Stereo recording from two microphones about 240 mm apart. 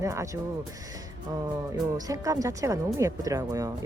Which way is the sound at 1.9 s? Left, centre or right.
Centre.